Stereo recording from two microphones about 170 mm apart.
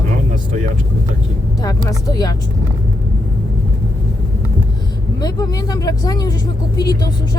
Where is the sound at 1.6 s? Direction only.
20° left (ahead or behind).